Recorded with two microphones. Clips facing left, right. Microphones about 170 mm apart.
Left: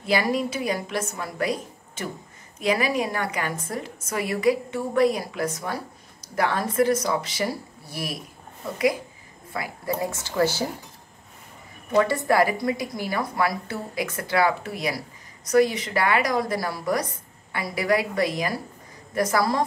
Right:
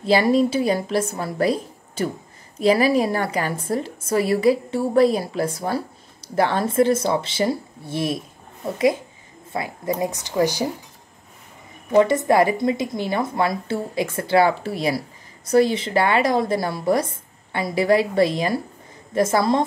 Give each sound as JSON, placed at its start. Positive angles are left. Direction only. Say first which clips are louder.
{"t": 0.0, "sound": "a woman's voice", "louder": "right 6 dB", "side_deg": -30}
{"t": 11.9, "sound": "a woman's voice", "louder": "right 5 dB", "side_deg": -20}